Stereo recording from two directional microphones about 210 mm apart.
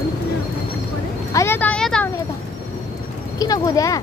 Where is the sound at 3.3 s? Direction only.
15° left (ahead or behind).